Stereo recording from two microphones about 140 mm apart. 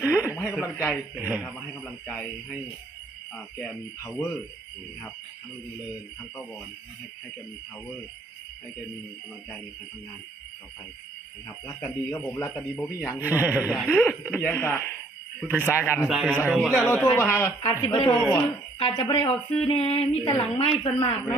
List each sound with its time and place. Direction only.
0.0 s radio: 10° right (ahead or behind)
0.3 s radio: 20° left (ahead or behind)
0.6 s speech: 15° left (ahead or behind)
1.1 s a man's voice: 10° right (ahead or behind)
1.8 s speech: 10° left (ahead or behind)
11.4 s speech: 15° left (ahead or behind)
13.1 s a man's voice: 10° right (ahead or behind)
13.9 s speech: 15° left (ahead or behind)
16.0 s a man's voice: 5° right (ahead or behind)
16.8 s speech: 15° left (ahead or behind)
17.6 s a woman's voice: 35° left (ahead or behind)
19.5 s female singing: 45° left (ahead or behind)
20.3 s a woman's voice: 40° left (ahead or behind)